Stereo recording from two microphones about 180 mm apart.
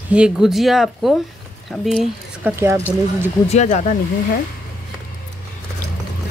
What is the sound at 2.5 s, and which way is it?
Speech, 15° right (ahead or behind).